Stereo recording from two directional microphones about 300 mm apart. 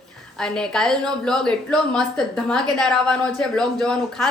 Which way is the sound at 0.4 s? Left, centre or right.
Centre.